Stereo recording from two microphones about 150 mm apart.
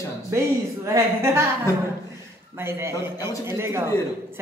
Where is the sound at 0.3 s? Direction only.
20° right (ahead or behind).